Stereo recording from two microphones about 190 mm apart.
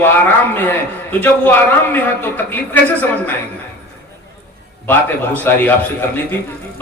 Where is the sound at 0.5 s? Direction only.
10° left (ahead or behind).